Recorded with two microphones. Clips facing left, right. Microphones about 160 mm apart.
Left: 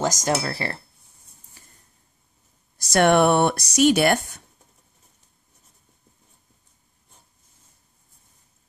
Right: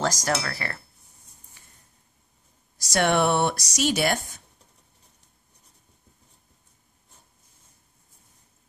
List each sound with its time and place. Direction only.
0.0 s speech: 20° left (ahead or behind)
1.6 s a sound: 35° left (ahead or behind)
2.9 s speech: 55° left (ahead or behind)